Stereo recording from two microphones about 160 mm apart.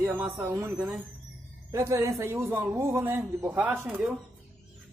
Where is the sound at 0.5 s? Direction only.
15° right (ahead or behind).